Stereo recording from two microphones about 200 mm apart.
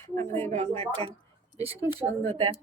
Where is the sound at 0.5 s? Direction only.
30° right (ahead or behind).